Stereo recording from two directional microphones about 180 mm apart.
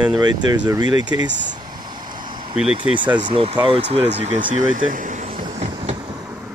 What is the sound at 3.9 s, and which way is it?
Vehicle, 35° right (ahead or behind).